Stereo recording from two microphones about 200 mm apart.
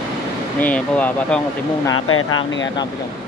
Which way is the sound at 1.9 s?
90° left.